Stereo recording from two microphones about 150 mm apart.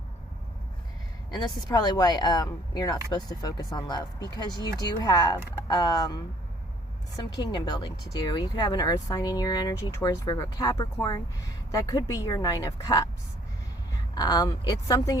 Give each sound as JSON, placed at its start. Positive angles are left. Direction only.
{"t": 1.6, "sound": "speech", "side_deg": 25}
{"t": 7.3, "sound": "speech", "side_deg": 25}
{"t": 14.2, "sound": "speech", "side_deg": 25}